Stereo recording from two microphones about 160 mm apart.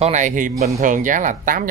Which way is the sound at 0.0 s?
50° right (ahead or behind).